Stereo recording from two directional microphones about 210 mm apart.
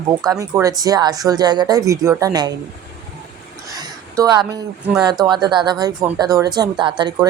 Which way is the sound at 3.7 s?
15° right (ahead or behind).